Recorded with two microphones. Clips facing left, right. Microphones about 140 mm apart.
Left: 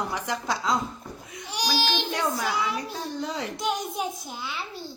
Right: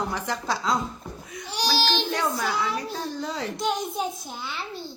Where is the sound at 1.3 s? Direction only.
20° left (ahead or behind).